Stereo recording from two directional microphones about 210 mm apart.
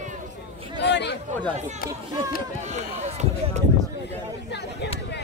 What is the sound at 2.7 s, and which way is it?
Run, 30° right (ahead or behind).